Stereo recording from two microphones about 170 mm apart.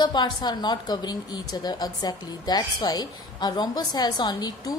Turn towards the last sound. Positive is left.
turn(degrees=25)  # may be behind; listen again after turning